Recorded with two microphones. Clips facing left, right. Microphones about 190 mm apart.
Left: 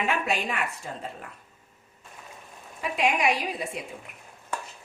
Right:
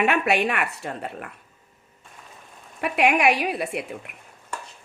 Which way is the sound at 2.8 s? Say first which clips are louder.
Right 5 dB; 70° right (ahead or behind).